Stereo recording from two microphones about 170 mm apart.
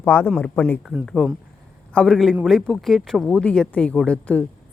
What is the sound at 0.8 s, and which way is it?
A woman's voice, centre (ahead or behind).